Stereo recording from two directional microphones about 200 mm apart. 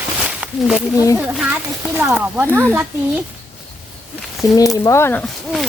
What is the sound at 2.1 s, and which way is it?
Speech, 10° right (ahead or behind).